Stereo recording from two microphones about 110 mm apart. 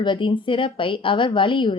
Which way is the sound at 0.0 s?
45° left (ahead or behind).